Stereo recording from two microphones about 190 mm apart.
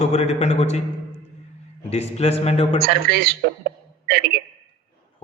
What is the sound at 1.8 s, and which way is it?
Speech, 35° left (ahead or behind).